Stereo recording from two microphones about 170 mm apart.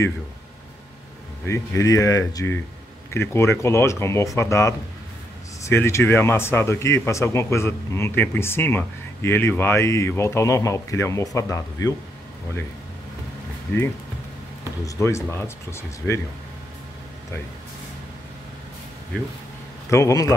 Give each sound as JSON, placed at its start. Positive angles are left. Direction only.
{"t": 1.4, "sound": "speech", "side_deg": 15}
{"t": 14.9, "sound": "speech", "side_deg": 15}
{"t": 19.9, "sound": "speech", "side_deg": 20}